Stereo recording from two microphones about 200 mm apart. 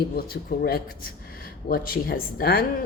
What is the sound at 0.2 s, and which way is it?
A woman's voice, 50° left (ahead or behind).